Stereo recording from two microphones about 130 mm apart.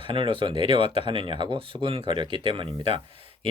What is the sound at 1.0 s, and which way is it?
Speech, 40° right (ahead or behind).